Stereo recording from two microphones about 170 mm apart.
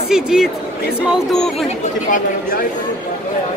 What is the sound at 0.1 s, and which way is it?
Speech, 5° right (ahead or behind).